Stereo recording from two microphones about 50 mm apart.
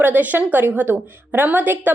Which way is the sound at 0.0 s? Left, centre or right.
Right.